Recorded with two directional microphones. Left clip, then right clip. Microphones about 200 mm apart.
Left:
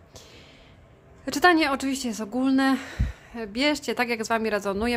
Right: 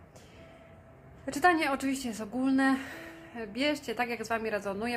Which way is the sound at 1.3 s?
35° left (ahead or behind).